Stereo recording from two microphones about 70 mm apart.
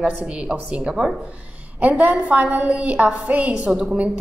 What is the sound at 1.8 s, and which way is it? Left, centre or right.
A woman's voice, right.